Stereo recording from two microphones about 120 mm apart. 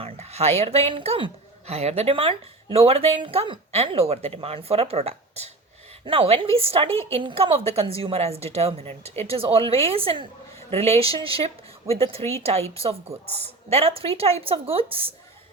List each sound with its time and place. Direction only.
0.0 s a woman's voice: 60° right (ahead or behind); by 3.6 s 45° right (ahead or behind)
3.7 s a woman's voice: 60° right (ahead or behind)